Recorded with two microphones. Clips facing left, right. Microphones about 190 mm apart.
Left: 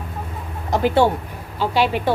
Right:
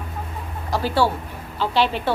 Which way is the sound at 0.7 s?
20° left (ahead or behind).